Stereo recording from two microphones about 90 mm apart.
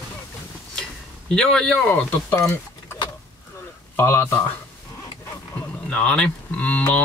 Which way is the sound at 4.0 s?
30° left (ahead or behind).